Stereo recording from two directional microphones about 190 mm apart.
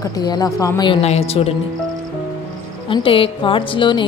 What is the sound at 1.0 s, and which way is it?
Speech, 35° left (ahead or behind).